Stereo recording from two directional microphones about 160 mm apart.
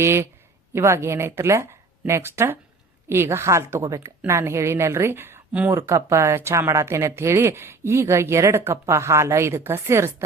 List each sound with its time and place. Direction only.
0.0 s speech: 15° right (ahead or behind)